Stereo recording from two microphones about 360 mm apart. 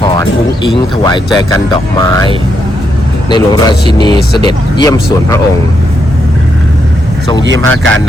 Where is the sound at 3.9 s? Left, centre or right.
Centre.